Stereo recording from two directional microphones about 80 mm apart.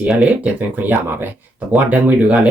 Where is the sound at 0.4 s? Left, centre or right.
Right.